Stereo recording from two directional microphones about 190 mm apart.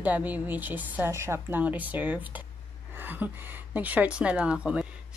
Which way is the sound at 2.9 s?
10° right (ahead or behind).